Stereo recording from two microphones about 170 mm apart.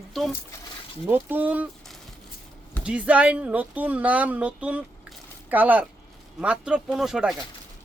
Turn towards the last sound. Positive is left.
turn(degrees=-5)  # may be behind; listen again after turning